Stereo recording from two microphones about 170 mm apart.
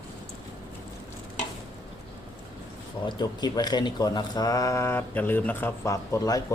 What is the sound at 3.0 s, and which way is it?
Speech, 25° left (ahead or behind).